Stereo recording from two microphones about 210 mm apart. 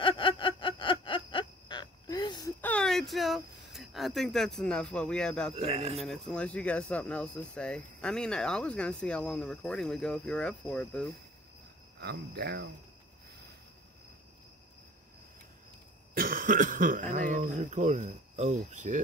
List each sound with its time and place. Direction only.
0.0 s a sound: 25° left (ahead or behind)
2.6 s speech: 5° left (ahead or behind)
5.6 s speech: 30° right (ahead or behind)
5.9 s speech: centre (ahead or behind)
12.0 s speech: 50° right (ahead or behind)
16.2 s cough: 40° right (ahead or behind)
17.1 s speech: 40° right (ahead or behind)